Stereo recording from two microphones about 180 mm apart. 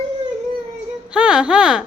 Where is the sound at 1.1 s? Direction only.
5° right (ahead or behind).